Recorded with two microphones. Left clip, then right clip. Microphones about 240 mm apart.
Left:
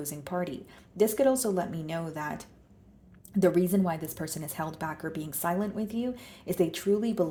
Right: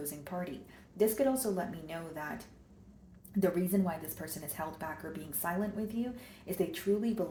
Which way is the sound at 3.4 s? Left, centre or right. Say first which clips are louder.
Left 7 dB; left.